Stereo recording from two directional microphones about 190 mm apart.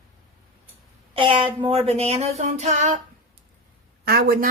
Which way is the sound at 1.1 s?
25° right (ahead or behind).